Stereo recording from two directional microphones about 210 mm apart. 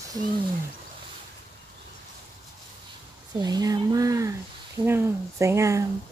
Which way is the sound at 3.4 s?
20° right (ahead or behind).